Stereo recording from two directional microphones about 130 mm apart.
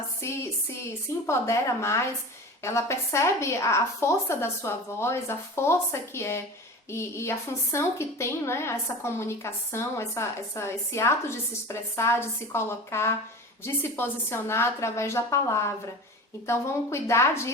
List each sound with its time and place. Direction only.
0.2 s a woman's voice: 20° left (ahead or behind)